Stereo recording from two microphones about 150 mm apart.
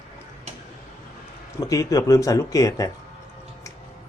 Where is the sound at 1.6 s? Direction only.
25° left (ahead or behind).